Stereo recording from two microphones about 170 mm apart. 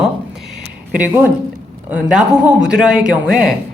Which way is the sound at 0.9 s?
10° right (ahead or behind).